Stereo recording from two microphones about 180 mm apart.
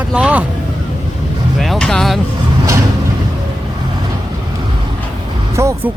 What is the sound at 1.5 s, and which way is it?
Speech, centre (ahead or behind).